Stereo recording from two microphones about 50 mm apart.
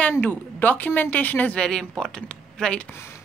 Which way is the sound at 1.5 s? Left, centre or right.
Centre.